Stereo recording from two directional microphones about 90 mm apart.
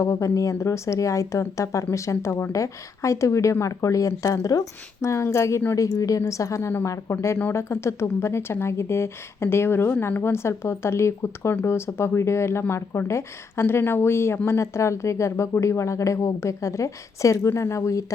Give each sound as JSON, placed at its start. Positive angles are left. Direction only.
{"t": 0.0, "sound": "speech", "side_deg": 35}